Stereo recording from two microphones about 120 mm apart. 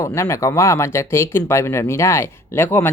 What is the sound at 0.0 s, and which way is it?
Speech, 25° left (ahead or behind).